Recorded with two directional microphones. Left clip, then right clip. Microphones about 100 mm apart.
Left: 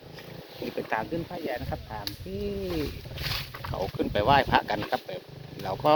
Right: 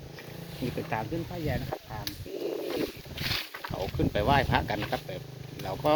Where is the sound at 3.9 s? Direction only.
30° left (ahead or behind).